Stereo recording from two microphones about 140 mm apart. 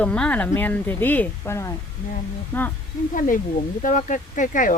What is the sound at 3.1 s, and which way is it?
Speech, 75° left (ahead or behind).